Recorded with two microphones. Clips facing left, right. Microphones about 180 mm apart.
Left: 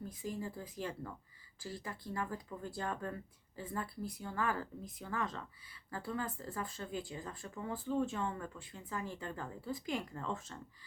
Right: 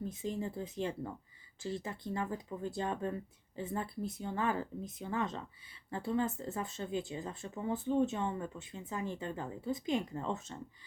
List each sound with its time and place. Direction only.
0.0 s speech: 25° right (ahead or behind)